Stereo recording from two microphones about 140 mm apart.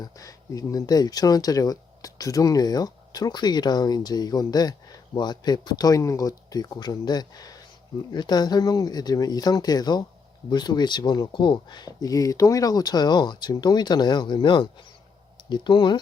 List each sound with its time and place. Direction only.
0.0 s speech: 25° left (ahead or behind)